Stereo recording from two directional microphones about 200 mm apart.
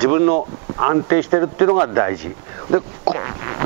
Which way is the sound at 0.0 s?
15° right (ahead or behind).